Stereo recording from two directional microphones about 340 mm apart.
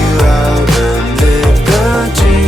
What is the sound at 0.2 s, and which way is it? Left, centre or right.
Music, centre.